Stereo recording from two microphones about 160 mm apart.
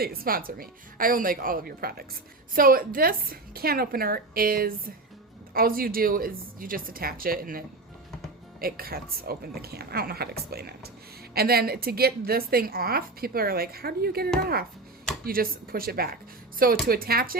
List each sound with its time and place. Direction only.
0.0 s a woman's voice: 70° right (ahead or behind)
8.6 s a woman's voice: 70° right (ahead or behind)